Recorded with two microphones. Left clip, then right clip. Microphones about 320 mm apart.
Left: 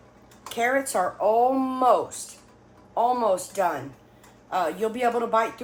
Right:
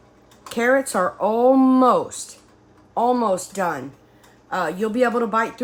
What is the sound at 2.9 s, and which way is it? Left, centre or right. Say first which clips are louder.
Speech: right 3 dB; right.